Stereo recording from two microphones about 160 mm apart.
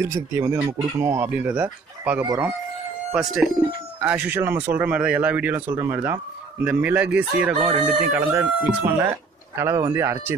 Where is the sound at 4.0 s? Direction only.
10° right (ahead or behind).